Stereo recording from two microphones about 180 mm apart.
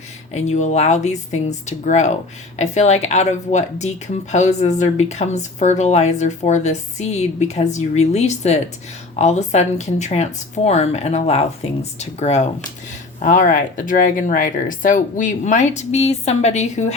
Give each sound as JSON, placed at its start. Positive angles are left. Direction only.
{"t": 0.4, "sound": "speech", "side_deg": 40}